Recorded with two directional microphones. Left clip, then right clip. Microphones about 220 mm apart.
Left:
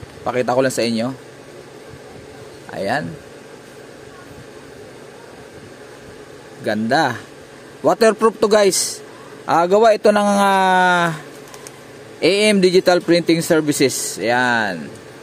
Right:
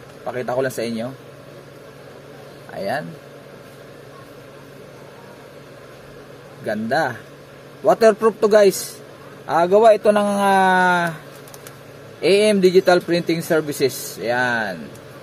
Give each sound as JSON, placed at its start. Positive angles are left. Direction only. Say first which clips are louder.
{"t": 0.2, "sound": "speech", "louder": "left 5 dB", "side_deg": 45}
{"t": 2.7, "sound": "speech", "louder": "left 3 dB", "side_deg": 35}
{"t": 6.6, "sound": "a man's voice", "louder": "left 3 dB", "side_deg": 35}
{"t": 12.2, "sound": "speech", "louder": "left 1 dB", "side_deg": 40}